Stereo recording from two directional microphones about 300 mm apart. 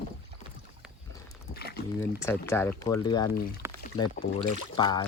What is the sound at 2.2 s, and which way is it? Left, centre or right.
Speech, centre.